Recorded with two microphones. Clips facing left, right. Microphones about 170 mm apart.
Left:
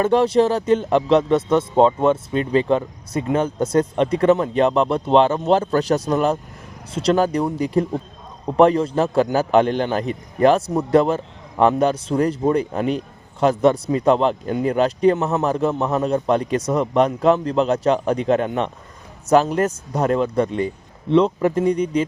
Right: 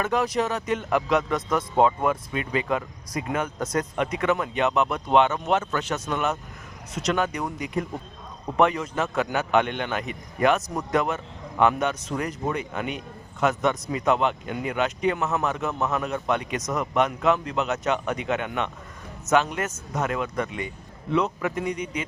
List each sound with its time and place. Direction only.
0.0 s a man's voice: 30° left (ahead or behind)